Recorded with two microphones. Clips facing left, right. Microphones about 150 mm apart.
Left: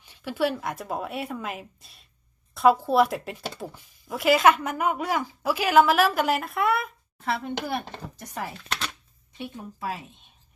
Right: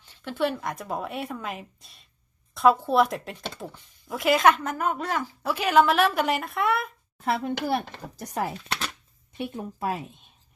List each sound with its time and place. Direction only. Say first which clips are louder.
0.0 s speech: left 1 dB; 10° left (ahead or behind)
7.4 s speech: right 3 dB; 40° right (ahead or behind)
9.4 s speech: right 4 dB; 50° right (ahead or behind)